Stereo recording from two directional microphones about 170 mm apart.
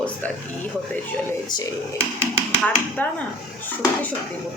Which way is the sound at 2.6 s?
10° left (ahead or behind).